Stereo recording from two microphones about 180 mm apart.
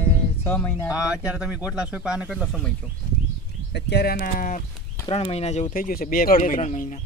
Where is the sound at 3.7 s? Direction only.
70° left (ahead or behind); by 4.6 s 50° left (ahead or behind).